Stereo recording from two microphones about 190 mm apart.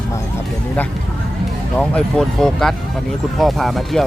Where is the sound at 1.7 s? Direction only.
5° left (ahead or behind).